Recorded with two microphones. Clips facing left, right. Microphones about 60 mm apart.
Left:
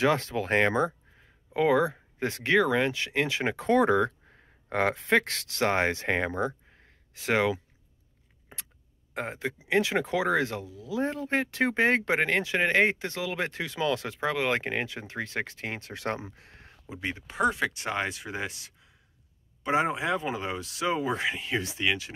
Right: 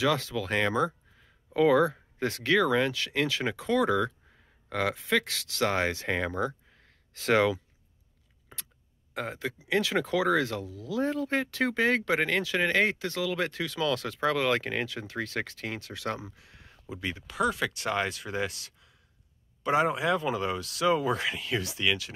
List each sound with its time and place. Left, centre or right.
0.0 s speech: left
1.5 s speech: left
3.5 s speech: left; by 7.5 s centre
8.5 s a sound: left
9.1 s speech: left
16.8 s speech: left